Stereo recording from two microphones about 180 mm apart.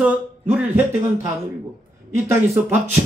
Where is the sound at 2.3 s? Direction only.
15° right (ahead or behind).